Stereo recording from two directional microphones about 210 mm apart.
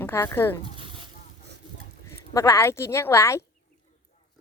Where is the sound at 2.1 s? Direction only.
15° left (ahead or behind).